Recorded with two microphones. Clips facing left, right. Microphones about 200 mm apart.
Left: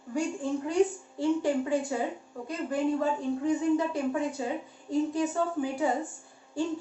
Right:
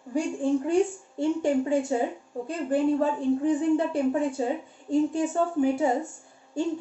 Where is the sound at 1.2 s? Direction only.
25° right (ahead or behind).